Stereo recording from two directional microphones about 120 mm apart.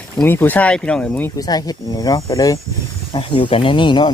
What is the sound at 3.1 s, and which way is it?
Speech, 45° left (ahead or behind).